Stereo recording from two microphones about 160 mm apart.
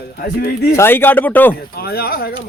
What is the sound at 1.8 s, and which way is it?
Speech, 75° left (ahead or behind).